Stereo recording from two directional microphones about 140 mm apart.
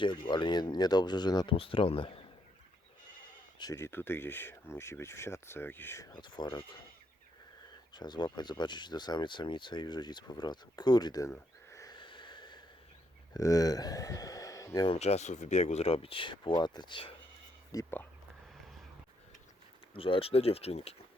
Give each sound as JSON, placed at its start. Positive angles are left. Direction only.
{"t": 0.0, "sound": "speech", "side_deg": 35}
{"t": 3.6, "sound": "speech", "side_deg": 20}
{"t": 6.1, "sound": "speech", "side_deg": 35}
{"t": 7.9, "sound": "speech", "side_deg": 30}
{"t": 14.8, "sound": "speech", "side_deg": 50}
{"t": 17.7, "sound": "speech", "side_deg": 25}
{"t": 19.9, "sound": "speech", "side_deg": 40}